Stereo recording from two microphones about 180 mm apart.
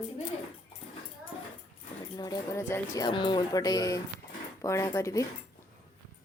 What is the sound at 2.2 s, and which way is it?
Speech, 20° left (ahead or behind).